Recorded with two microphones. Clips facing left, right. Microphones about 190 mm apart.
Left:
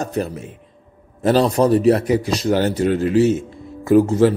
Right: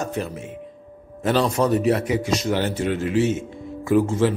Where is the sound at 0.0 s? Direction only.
35° left (ahead or behind).